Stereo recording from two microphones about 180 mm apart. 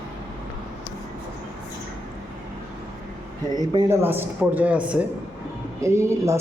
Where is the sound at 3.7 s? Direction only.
15° right (ahead or behind).